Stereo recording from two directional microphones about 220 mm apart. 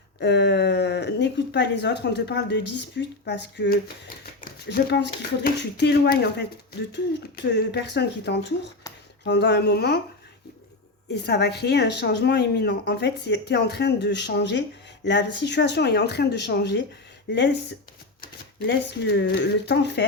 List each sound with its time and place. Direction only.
0.2 s a woman's voice: 50° left (ahead or behind)
7.5 s a woman's voice: 50° left (ahead or behind)
11.1 s a woman's voice: 50° left (ahead or behind)
18.2 s speech: 50° left (ahead or behind)